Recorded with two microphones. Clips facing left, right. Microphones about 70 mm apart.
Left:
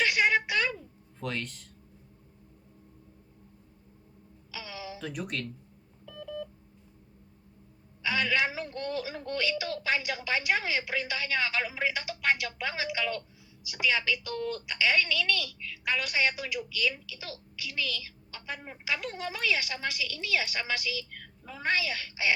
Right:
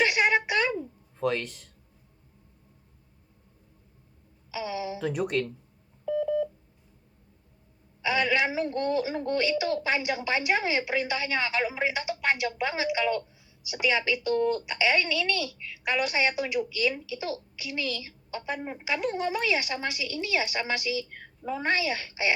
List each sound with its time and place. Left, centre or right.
0.0 s a sound: right
1.2 s speech: centre
4.5 s a sound: right
5.1 s speech: centre
6.1 s beep: right
8.0 s a woman's voice: right